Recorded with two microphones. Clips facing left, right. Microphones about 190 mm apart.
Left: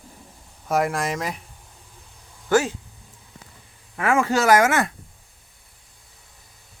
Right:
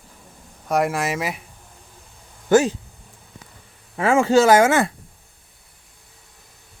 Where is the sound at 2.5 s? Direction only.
20° right (ahead or behind).